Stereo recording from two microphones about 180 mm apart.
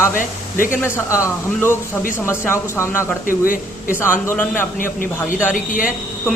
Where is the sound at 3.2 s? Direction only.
50° left (ahead or behind).